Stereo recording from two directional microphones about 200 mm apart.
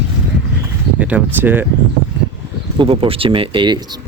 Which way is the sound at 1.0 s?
10° right (ahead or behind).